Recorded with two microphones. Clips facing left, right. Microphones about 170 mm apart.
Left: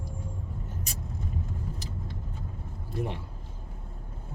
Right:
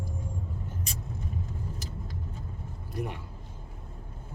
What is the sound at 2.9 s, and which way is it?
Speech, 25° left (ahead or behind).